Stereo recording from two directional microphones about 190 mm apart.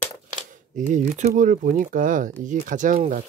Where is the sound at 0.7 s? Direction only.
40° right (ahead or behind).